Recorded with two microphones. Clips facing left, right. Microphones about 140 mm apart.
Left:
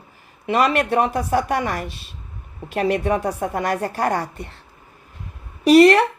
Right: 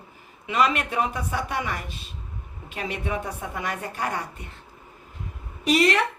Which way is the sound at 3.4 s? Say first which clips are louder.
Left 10 dB; 50° left (ahead or behind).